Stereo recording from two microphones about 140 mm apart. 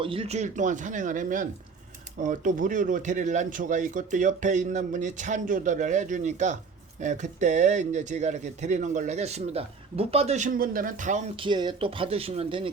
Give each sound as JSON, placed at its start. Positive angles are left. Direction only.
{"t": 0.0, "sound": "speech", "side_deg": -40}
{"t": 11.3, "sound": "speech", "side_deg": -35}